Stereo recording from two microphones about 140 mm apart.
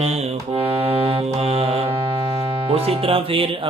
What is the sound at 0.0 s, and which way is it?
Music, 50° right (ahead or behind).